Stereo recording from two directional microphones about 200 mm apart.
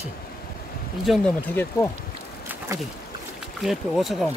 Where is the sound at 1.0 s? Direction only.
Centre (ahead or behind).